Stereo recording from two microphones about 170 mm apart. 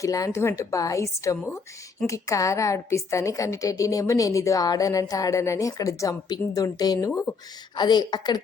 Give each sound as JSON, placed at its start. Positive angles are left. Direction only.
{"t": 0.0, "sound": "a woman's voice", "side_deg": 20}
{"t": 7.1, "sound": "a woman's voice", "side_deg": 10}
{"t": 7.8, "sound": "a woman's voice", "side_deg": 25}